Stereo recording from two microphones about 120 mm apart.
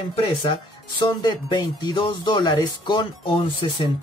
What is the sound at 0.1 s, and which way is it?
Speech, 45° left (ahead or behind).